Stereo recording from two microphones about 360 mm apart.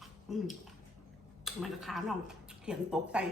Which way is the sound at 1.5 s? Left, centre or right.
Centre.